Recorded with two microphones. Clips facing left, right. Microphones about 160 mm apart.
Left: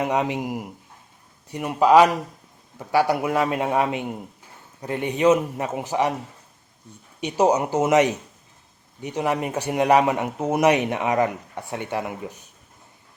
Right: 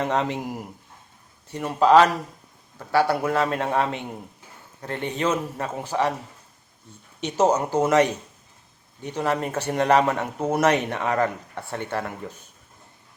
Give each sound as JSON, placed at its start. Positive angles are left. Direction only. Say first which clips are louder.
{"t": 0.0, "sound": "speech", "louder": "left 1 dB", "side_deg": 10}
{"t": 7.2, "sound": "speech", "louder": "left 1 dB", "side_deg": 10}